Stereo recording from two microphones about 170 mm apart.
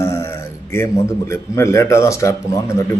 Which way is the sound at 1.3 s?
15° left (ahead or behind).